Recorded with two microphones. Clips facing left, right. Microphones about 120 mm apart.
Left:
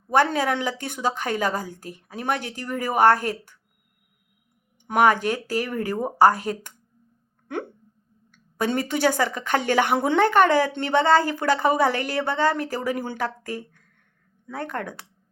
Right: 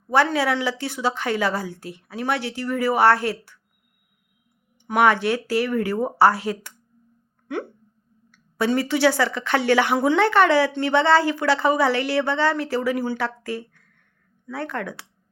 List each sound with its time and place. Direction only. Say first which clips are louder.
0.3 s a woman's voice: right 2 dB; 45° left (ahead or behind)
4.9 s a woman's voice: right 1 dB; 40° left (ahead or behind)
8.3 s a woman's voice: right 3 dB; 50° left (ahead or behind)